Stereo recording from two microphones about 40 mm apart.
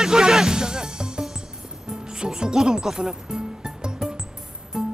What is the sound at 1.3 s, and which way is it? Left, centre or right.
Music, centre.